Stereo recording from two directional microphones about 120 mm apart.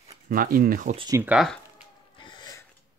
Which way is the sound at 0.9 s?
80° right.